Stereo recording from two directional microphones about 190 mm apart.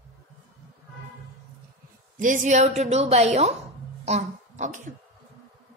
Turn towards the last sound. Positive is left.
turn(degrees=-40)  # may be behind; listen again after turning